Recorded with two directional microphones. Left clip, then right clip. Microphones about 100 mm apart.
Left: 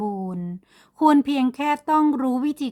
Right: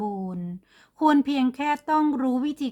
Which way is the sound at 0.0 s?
50° left (ahead or behind).